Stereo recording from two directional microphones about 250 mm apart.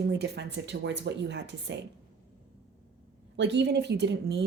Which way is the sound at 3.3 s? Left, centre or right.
Right.